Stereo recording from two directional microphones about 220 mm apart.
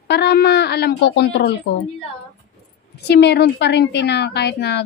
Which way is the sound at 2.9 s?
50° left (ahead or behind).